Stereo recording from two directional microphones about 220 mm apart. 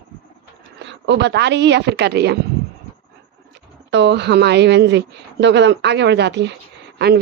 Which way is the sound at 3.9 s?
50° right (ahead or behind).